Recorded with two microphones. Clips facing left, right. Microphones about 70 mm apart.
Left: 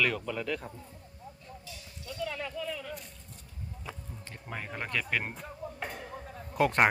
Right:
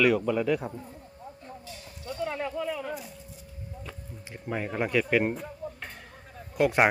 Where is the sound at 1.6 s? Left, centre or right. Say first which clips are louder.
Right 6 dB; right.